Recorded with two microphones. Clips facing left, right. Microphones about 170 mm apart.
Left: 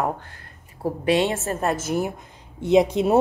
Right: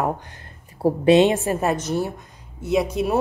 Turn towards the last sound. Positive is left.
turn(degrees=25)  # may be behind; listen again after turning